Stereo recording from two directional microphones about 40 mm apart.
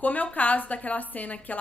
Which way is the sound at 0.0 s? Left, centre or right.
Left.